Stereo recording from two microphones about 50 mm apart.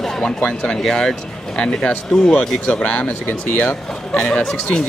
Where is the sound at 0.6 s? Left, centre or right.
Centre.